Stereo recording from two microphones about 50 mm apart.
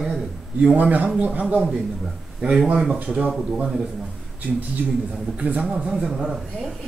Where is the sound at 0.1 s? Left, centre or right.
Right.